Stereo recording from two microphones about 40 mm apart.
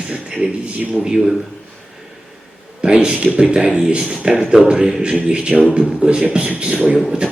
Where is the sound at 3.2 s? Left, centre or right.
Right.